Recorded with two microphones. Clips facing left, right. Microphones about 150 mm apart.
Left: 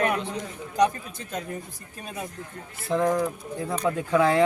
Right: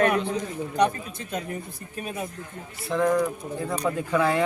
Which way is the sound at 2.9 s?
5° left (ahead or behind).